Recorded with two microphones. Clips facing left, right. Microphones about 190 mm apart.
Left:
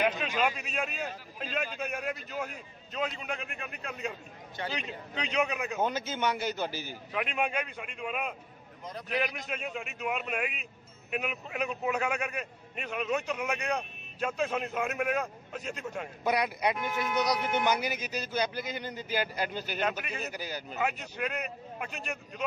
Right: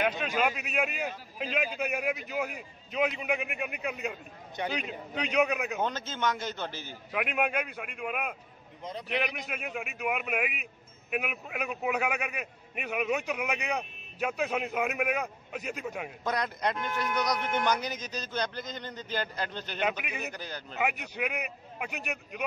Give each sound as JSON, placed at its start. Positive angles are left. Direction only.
{"t": 0.0, "sound": "a man's voice", "side_deg": -5}
{"t": 5.8, "sound": "speech", "side_deg": 10}
{"t": 7.1, "sound": "a man's voice", "side_deg": -10}
{"t": 9.4, "sound": "a man's voice", "side_deg": -5}
{"t": 16.3, "sound": "speech", "side_deg": 10}
{"t": 20.8, "sound": "a man's voice", "side_deg": -10}